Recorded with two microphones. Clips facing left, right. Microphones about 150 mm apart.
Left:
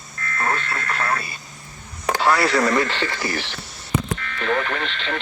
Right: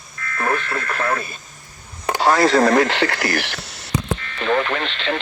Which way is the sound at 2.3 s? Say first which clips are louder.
Right 5 dB; 45° right (ahead or behind).